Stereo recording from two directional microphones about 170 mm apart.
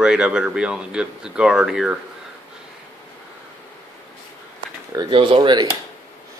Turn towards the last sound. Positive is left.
turn(degrees=-25)  # may be behind; listen again after turning